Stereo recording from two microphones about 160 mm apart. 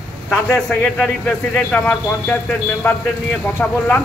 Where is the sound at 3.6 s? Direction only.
5° left (ahead or behind).